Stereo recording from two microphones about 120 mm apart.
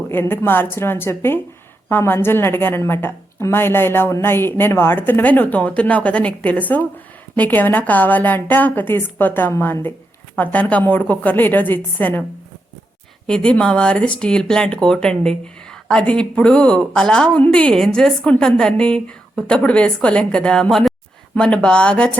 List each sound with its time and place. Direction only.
0.1 s a woman's voice: 20° left (ahead or behind)
13.2 s a woman's voice: 5° left (ahead or behind)